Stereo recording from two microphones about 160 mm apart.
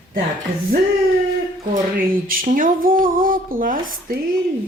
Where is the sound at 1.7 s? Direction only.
60° right (ahead or behind).